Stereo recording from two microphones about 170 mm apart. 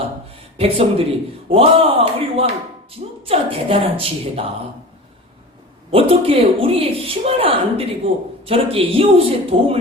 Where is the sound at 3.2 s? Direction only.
35° right (ahead or behind).